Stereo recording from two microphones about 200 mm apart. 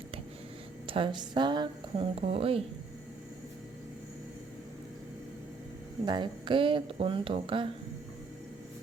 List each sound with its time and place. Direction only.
0.9 s speech: 25° right (ahead or behind)
6.1 s speech: 25° right (ahead or behind)